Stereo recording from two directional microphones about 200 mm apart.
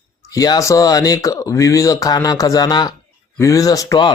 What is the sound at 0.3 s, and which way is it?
A man's voice, 20° left (ahead or behind).